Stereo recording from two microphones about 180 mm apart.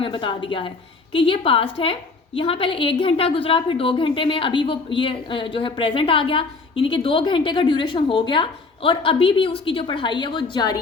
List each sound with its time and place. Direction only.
0.0 s a woman's voice: 30° left (ahead or behind)